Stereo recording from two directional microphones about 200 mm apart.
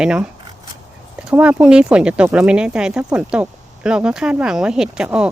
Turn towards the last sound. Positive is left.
turn(degrees=-5)  # may be behind; listen again after turning